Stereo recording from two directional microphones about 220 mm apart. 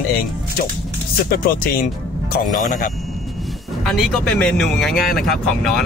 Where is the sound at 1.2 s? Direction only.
45° left (ahead or behind).